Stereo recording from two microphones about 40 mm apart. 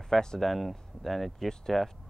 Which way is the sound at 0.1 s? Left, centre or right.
Centre.